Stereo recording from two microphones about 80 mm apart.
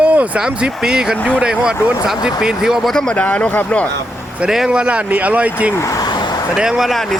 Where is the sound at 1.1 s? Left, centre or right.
Centre.